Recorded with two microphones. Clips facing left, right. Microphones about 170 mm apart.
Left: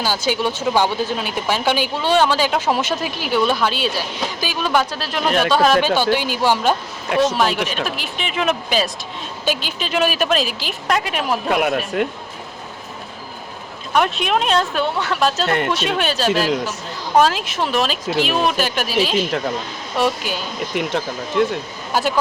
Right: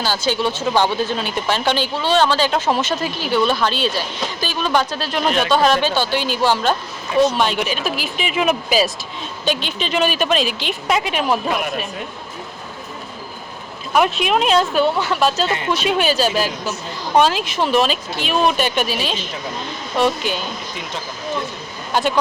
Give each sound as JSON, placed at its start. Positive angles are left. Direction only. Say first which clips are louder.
{"t": 0.0, "sound": "a woman's voice", "louder": "even", "side_deg": 10}
{"t": 9.5, "sound": "a woman's voice", "louder": "right 1 dB", "side_deg": 5}
{"t": 11.4, "sound": "speech", "louder": "left 3 dB", "side_deg": 65}
{"t": 13.9, "sound": "a woman's voice", "louder": "right 1 dB", "side_deg": -5}
{"t": 15.4, "sound": "speech", "louder": "left 3 dB", "side_deg": 60}
{"t": 15.7, "sound": "a woman's voice", "louder": "right 2 dB", "side_deg": 0}
{"t": 21.9, "sound": "a woman's voice", "louder": "right 1 dB", "side_deg": 5}